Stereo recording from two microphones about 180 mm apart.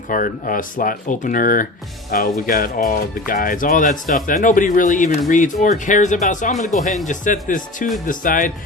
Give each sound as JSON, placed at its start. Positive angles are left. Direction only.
{"t": 0.1, "sound": "speech", "side_deg": 50}